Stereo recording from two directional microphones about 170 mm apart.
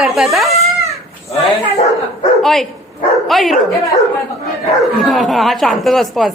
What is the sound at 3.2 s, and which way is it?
Speech, centre (ahead or behind).